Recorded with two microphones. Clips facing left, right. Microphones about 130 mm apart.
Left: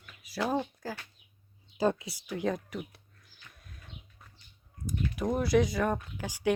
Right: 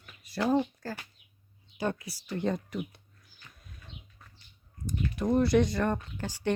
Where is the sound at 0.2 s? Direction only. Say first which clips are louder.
Right 4 dB; 5° left (ahead or behind).